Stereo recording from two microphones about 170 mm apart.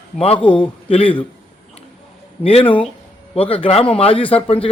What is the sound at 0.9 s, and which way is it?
Speech, 30° left (ahead or behind).